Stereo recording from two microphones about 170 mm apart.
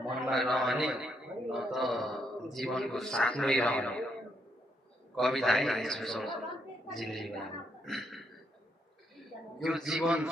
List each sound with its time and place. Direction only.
0.0 s a man's voice: centre (ahead or behind)
5.1 s a man's voice: centre (ahead or behind)
7.9 s a sound: centre (ahead or behind)
9.6 s a man's voice: centre (ahead or behind)